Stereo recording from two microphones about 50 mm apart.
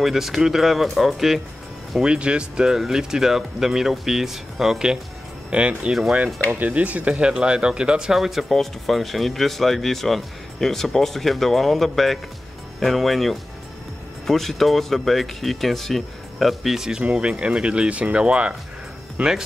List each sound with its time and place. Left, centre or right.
0.0 s speech: centre
2.0 s speech: centre
5.5 s speech: right
8.5 s speech: centre
17.0 s speech: right